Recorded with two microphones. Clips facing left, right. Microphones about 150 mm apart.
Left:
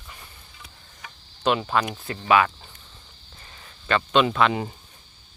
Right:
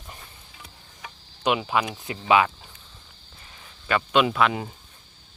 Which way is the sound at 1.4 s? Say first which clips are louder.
Left 1 dB; 10° right (ahead or behind).